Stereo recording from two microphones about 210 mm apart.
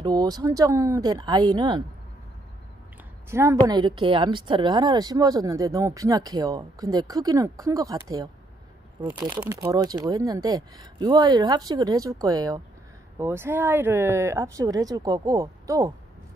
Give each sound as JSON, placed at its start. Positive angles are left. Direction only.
{"t": 0.0, "sound": "a woman's voice", "side_deg": -20}
{"t": 3.3, "sound": "a woman's voice", "side_deg": -15}
{"t": 9.3, "sound": "a woman's voice", "side_deg": -15}